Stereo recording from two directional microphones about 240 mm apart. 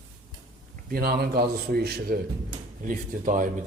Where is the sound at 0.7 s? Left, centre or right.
Right.